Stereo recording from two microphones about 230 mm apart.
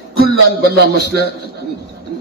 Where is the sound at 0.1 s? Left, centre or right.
Right.